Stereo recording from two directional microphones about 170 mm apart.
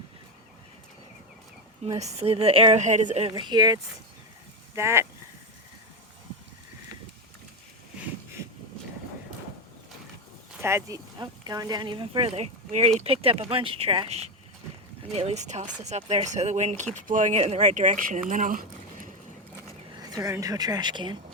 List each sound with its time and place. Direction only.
1.8 s speech: 40° right (ahead or behind)
4.7 s speech: 15° right (ahead or behind)
10.6 s speech: 15° right (ahead or behind); by 18.6 s 50° right (ahead or behind)
20.0 s a woman's voice: 20° right (ahead or behind)